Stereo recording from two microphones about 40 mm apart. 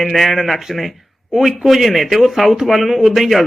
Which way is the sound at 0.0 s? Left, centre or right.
Centre.